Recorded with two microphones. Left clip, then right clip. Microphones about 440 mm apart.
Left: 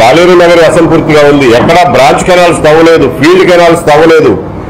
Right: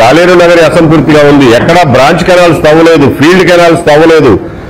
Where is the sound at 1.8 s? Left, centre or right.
Right.